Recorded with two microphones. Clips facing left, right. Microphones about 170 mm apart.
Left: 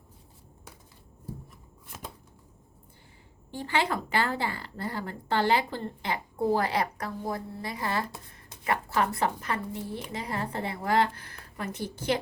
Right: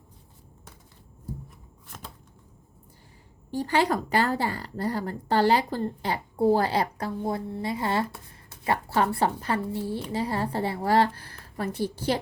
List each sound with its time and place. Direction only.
3.5 s a woman's voice: 40° right (ahead or behind)